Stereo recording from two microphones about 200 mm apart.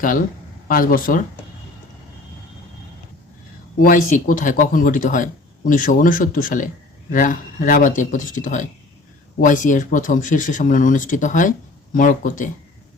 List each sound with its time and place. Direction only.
0.7 s speech: 45° left (ahead or behind)
3.8 s speech: 40° left (ahead or behind)